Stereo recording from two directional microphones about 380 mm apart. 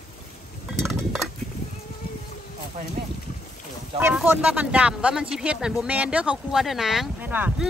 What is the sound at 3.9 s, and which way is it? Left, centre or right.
Speech, centre.